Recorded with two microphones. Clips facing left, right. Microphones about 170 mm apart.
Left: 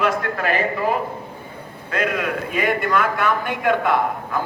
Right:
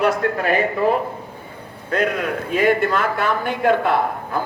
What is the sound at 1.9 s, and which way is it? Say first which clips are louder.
A man's voice: right 2 dB; 35° right (ahead or behind).